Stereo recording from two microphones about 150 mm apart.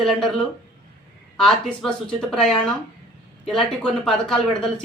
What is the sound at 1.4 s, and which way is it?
A man's voice, 5° left (ahead or behind).